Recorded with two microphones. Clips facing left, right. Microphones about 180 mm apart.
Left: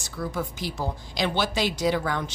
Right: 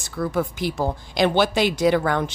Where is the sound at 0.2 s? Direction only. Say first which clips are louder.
Right 7 dB; 55° right (ahead or behind).